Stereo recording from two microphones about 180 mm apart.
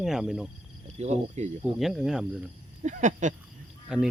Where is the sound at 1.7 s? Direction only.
Centre (ahead or behind).